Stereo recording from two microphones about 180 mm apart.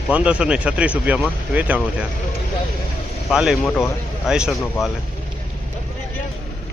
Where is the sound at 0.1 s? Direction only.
5° right (ahead or behind).